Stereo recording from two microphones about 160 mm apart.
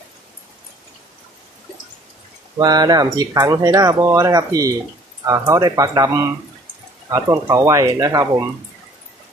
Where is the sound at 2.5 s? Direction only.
25° right (ahead or behind).